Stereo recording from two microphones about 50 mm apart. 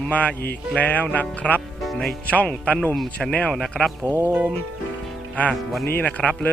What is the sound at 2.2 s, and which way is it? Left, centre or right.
A man's voice, left.